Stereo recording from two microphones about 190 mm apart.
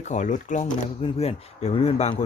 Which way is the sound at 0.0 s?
40° left (ahead or behind).